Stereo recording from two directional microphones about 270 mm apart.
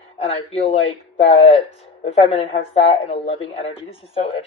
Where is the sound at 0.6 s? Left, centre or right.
Left.